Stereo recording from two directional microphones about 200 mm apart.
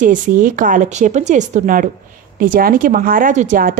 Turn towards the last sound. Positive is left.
turn(degrees=-40)  # may be behind; listen again after turning